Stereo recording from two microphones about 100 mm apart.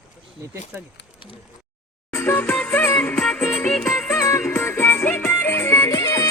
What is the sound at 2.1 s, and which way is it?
Music, 20° left (ahead or behind).